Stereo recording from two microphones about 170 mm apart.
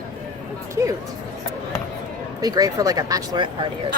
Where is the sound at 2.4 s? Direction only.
20° right (ahead or behind).